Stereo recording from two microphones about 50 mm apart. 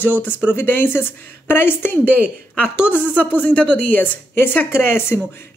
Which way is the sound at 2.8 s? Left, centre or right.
Left.